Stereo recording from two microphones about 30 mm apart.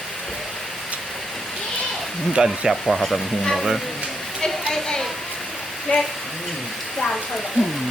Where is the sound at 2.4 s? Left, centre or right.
Right.